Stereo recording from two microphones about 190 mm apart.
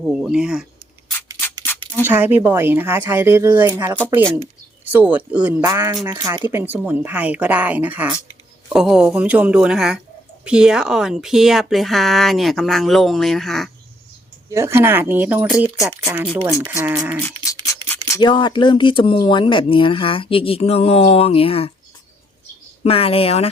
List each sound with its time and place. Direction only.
0.0 s speech: 5° right (ahead or behind)
2.0 s speech: 10° right (ahead or behind)
4.9 s speech: 10° right (ahead or behind)
14.5 s speech: 15° right (ahead or behind)
17.2 s scratch: 15° left (ahead or behind)
18.2 s speech: 25° left (ahead or behind)
22.8 s speech: 30° left (ahead or behind)